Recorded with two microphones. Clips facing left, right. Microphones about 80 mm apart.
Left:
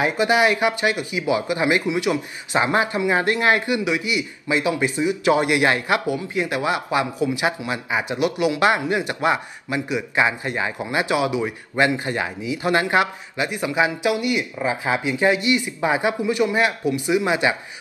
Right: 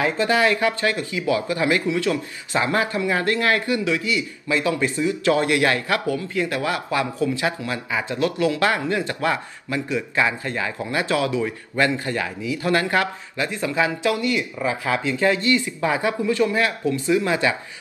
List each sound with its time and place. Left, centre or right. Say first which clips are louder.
0.0 s speech: left 1 dB; centre